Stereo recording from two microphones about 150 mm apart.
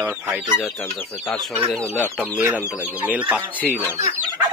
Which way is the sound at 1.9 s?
10° left (ahead or behind).